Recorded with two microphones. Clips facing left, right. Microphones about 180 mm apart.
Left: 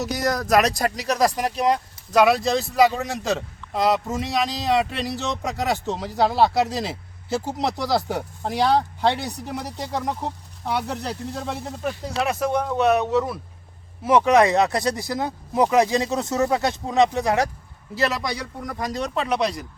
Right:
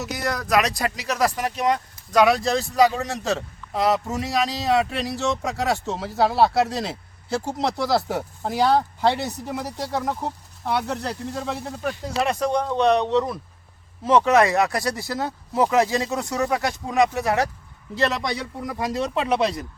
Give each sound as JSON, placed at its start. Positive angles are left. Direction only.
{"t": 0.0, "sound": "speech", "side_deg": 40}
{"t": 2.1, "sound": "speech", "side_deg": 0}
{"t": 17.9, "sound": "speech", "side_deg": 0}